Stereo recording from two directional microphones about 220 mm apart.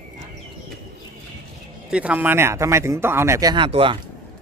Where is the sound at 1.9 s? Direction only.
5° right (ahead or behind); by 3.9 s 25° right (ahead or behind).